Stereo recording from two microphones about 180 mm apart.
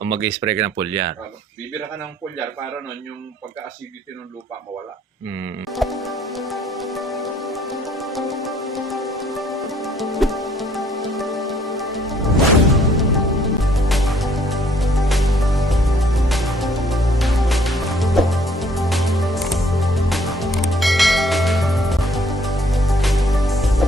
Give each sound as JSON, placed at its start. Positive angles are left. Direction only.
{"t": 0.1, "sound": "speech", "side_deg": -90}
{"t": 0.4, "sound": "speech", "side_deg": -15}
{"t": 5.7, "sound": "music", "side_deg": 0}